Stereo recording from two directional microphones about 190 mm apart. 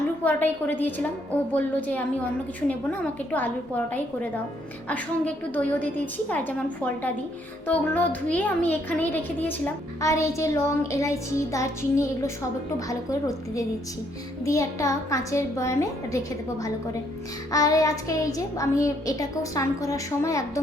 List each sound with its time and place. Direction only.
0.3 s a child's voice: 10° left (ahead or behind)
7.7 s a child's voice: 10° left (ahead or behind)
17.5 s a child's voice: 20° left (ahead or behind)